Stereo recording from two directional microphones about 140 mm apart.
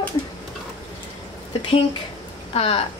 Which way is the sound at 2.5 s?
45° left (ahead or behind).